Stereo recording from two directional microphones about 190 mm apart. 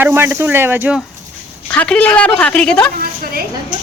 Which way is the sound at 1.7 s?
5° left (ahead or behind).